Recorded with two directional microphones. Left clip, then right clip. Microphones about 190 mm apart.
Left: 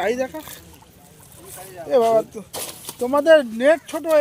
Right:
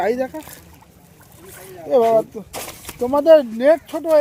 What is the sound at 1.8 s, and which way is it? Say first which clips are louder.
Speech: right 2 dB; 20° right (ahead or behind).